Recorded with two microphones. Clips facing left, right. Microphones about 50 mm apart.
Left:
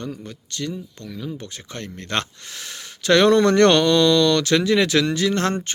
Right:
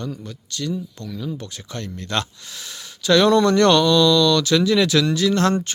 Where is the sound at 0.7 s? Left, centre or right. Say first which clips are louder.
Right 4 dB; left.